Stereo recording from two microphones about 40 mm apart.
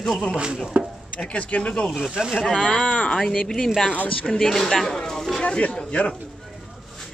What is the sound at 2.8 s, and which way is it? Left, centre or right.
Speech, left.